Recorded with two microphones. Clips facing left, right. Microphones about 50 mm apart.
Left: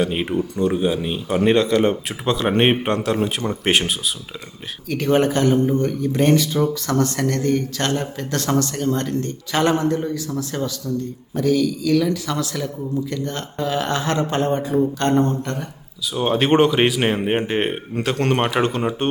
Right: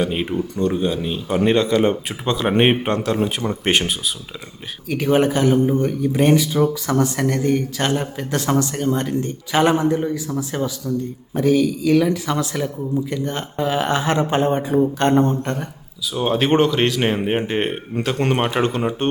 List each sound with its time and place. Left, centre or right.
0.0 s speech: centre
16.1 s speech: centre